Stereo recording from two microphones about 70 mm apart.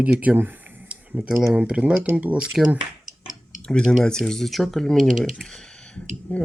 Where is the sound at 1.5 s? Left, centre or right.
Centre.